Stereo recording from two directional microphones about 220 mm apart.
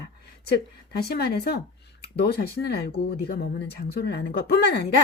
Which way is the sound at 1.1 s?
45° left (ahead or behind).